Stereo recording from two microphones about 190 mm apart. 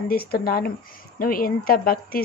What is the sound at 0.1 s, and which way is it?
A woman's voice, 50° left (ahead or behind).